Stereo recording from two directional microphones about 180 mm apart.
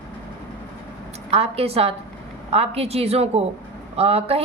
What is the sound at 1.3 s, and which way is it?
A woman's voice, 35° right (ahead or behind).